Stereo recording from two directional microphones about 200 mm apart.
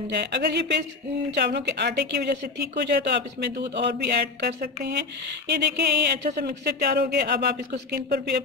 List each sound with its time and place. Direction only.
0.1 s speech: 55° right (ahead or behind)